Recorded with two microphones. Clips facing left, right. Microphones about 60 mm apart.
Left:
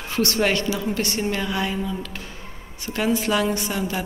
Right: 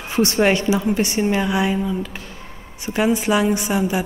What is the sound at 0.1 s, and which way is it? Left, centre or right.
A woman's voice, right.